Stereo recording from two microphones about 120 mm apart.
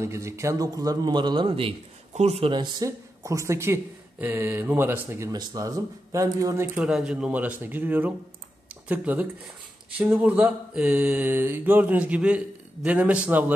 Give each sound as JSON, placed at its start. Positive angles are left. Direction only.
{"t": 0.0, "sound": "a man's voice", "side_deg": -25}
{"t": 2.5, "sound": "a man's voice", "side_deg": -40}
{"t": 3.3, "sound": "speech", "side_deg": -25}
{"t": 5.3, "sound": "speech", "side_deg": -30}
{"t": 6.8, "sound": "mantra", "side_deg": -5}